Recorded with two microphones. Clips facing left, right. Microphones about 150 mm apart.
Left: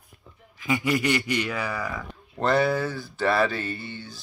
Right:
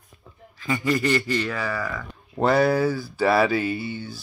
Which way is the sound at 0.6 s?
15° left (ahead or behind).